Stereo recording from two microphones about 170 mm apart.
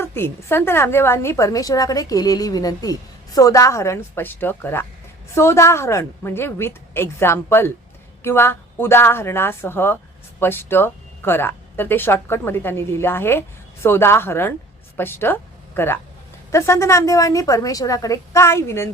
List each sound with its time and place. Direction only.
0.0 s a woman's voice: 15° left (ahead or behind)